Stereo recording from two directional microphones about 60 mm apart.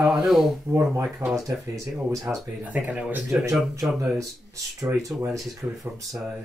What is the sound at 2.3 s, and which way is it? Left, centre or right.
Speech, right.